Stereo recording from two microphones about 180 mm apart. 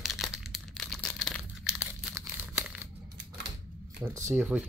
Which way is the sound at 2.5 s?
5° right (ahead or behind).